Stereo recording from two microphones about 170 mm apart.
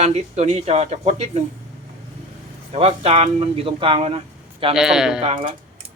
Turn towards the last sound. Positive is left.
turn(degrees=-35)  # may be behind; listen again after turning